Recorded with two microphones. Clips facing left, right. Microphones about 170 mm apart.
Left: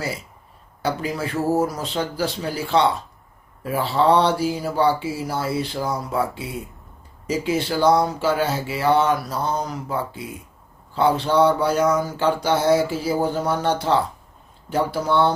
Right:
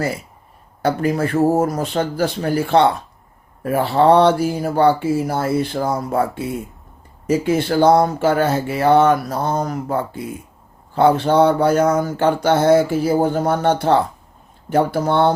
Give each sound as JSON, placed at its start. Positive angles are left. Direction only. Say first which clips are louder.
{"t": 0.8, "sound": "speech", "louder": "right 6 dB", "side_deg": -55}